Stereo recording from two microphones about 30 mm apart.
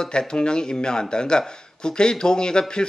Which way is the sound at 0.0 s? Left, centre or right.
Left.